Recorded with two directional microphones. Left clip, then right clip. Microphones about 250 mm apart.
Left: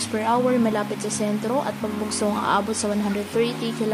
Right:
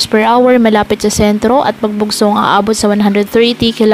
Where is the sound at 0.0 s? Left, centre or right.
Right.